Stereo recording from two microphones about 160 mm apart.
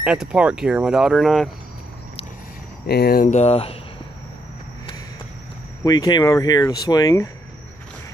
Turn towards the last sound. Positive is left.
turn(degrees=20)  # may be behind; listen again after turning